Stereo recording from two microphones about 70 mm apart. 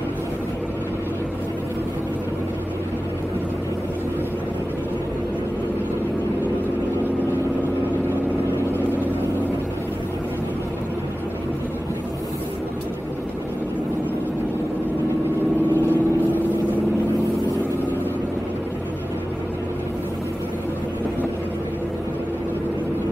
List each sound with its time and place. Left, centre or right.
15.7 s vehicle: left